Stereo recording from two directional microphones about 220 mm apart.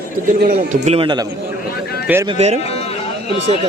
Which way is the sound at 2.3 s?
30° right (ahead or behind).